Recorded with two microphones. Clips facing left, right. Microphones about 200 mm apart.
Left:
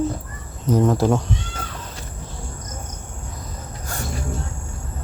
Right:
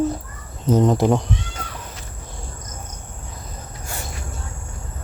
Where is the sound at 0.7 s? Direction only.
20° right (ahead or behind).